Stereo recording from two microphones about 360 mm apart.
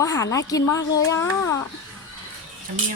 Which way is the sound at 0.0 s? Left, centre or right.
Centre.